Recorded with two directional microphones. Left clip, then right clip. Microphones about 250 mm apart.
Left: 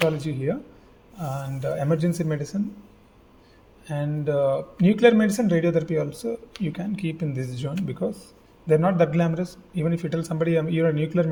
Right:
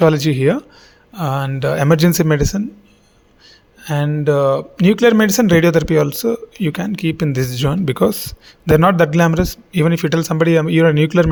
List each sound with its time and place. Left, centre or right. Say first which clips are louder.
0.2 s speech: right 12 dB; right
3.8 s speech: right 10 dB; right